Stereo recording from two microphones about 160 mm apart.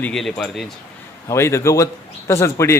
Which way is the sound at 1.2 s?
15° left (ahead or behind).